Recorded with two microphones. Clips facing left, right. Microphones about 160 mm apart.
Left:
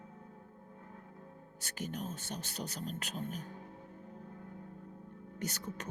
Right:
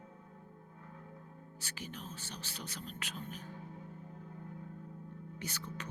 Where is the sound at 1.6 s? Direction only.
45° left (ahead or behind).